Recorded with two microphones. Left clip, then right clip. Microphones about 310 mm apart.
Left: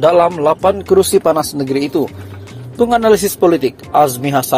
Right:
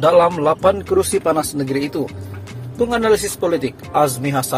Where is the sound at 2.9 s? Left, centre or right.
Centre.